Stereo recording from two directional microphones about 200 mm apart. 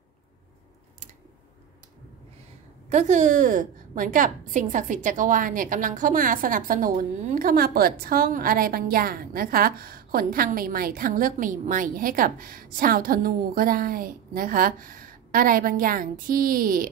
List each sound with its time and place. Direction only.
2.9 s a woman's voice: 35° right (ahead or behind)